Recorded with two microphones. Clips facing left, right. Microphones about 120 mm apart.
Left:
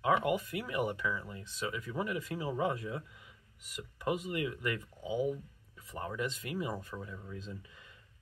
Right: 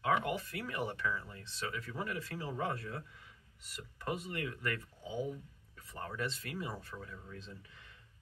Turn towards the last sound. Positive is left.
turn(degrees=15)  # may be behind; listen again after turning